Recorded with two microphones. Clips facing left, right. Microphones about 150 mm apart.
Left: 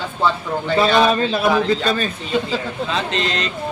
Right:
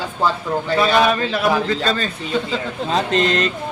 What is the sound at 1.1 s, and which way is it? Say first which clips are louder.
A man's voice: left 1 dB; 20° left (ahead or behind).